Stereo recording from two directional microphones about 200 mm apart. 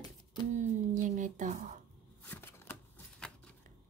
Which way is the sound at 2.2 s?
10° left (ahead or behind).